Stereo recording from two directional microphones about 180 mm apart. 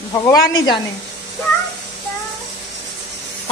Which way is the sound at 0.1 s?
20° left (ahead or behind).